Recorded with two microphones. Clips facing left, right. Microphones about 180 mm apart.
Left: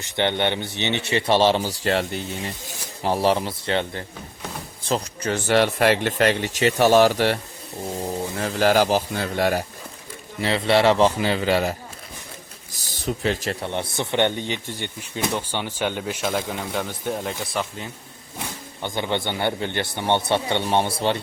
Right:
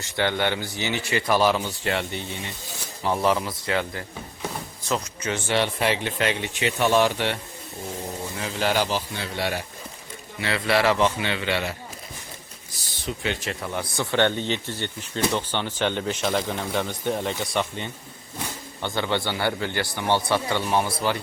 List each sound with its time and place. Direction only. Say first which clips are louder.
0.0 s a man's voice: left 2 dB; 20° left (ahead or behind); by 7.3 s 40° left (ahead or behind)
8.4 s a man's voice: left 5 dB; 45° left (ahead or behind)
10.4 s a man's voice: left 4 dB; 25° left (ahead or behind)
12.8 s speech: left 5 dB; 40° left (ahead or behind); by 17.9 s centre (ahead or behind)
18.8 s speech: even; 15° left (ahead or behind)